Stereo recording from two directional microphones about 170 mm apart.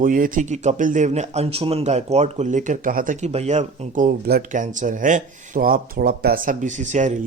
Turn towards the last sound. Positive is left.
turn(degrees=-45)  # may be behind; listen again after turning